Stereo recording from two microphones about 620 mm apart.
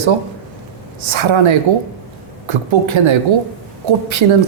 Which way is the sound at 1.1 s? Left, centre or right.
Right.